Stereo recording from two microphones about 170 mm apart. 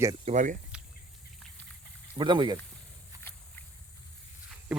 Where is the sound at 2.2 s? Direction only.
30° right (ahead or behind).